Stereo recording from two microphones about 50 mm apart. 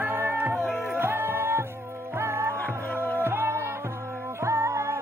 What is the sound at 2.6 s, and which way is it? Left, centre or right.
Music, left.